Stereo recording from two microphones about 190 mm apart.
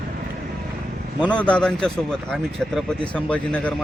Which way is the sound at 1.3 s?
5° left (ahead or behind).